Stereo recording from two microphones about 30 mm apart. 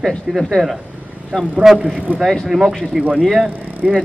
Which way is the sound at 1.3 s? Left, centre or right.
Right.